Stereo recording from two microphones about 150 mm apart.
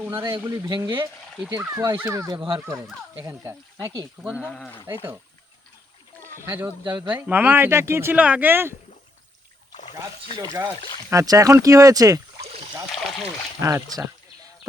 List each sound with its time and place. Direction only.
0.1 s speech: 20° right (ahead or behind)
2.3 s speech: 35° right (ahead or behind)
3.2 s speech: 20° right (ahead or behind)
4.2 s speech: 5° right (ahead or behind)
6.4 s speech: 15° right (ahead or behind)
11.1 s speech: 20° right (ahead or behind)
12.9 s speech: centre (ahead or behind)
13.6 s speech: 20° right (ahead or behind)